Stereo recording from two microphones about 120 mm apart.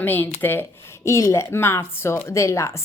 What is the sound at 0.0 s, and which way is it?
A woman's voice, 15° left (ahead or behind).